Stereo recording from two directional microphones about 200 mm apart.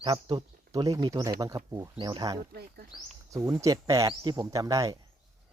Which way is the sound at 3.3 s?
15° right (ahead or behind).